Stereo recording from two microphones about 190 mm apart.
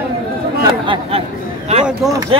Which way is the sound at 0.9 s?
30° right (ahead or behind).